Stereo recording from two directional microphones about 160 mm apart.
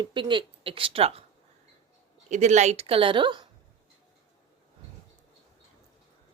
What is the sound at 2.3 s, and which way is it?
A woman's voice, 45° right (ahead or behind).